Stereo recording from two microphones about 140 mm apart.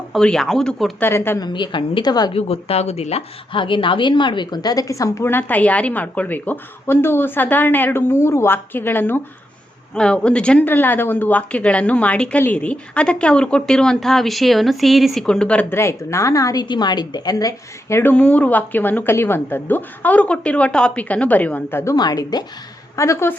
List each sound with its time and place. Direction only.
0.1 s speech: 5° left (ahead or behind)
0.9 s speech: 15° left (ahead or behind)
1.4 s a woman's voice: 30° left (ahead or behind)
2.3 s speech: 45° left (ahead or behind); by 21.9 s 15° left (ahead or behind)
21.9 s a woman's voice: 30° left (ahead or behind)